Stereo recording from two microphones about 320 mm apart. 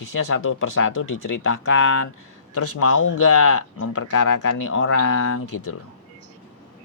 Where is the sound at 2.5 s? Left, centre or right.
Left.